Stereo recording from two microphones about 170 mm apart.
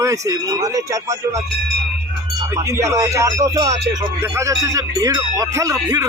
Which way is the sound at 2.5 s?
15° right (ahead or behind).